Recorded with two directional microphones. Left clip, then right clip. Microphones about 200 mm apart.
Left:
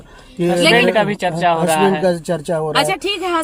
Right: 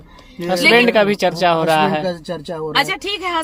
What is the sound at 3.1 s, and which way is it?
Speech, 5° left (ahead or behind).